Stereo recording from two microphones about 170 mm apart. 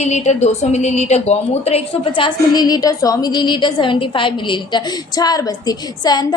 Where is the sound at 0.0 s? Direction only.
40° left (ahead or behind).